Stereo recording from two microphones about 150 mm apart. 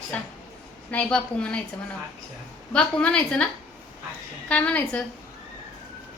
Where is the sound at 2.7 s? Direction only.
5° left (ahead or behind).